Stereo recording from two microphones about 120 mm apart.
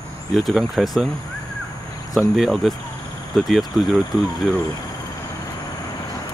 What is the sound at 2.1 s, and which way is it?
Speech, centre (ahead or behind).